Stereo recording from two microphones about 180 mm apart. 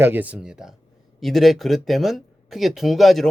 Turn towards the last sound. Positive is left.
turn(degrees=0)  # may be behind; listen again after turning